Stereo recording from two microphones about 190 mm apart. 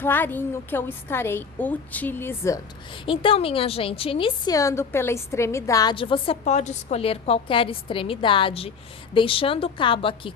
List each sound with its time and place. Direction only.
0.0 s a woman's voice: 10° left (ahead or behind)
3.1 s a woman's voice: 30° left (ahead or behind)